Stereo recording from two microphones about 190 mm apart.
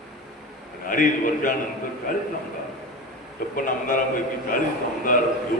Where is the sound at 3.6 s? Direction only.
45° left (ahead or behind).